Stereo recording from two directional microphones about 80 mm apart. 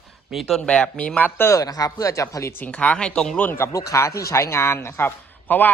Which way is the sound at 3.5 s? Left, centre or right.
Left.